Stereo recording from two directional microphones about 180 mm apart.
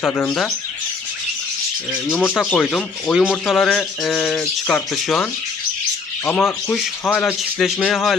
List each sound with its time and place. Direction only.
0.0 s speech: 10° left (ahead or behind)
2.0 s speech: 10° left (ahead or behind)
2.3 s speech: centre (ahead or behind)